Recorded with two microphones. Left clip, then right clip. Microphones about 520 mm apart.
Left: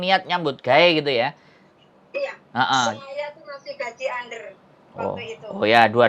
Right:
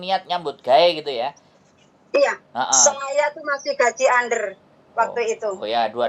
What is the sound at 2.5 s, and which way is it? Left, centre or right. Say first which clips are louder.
Speech: even; left.